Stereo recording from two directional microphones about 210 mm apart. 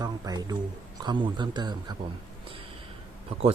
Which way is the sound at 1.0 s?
20° right (ahead or behind).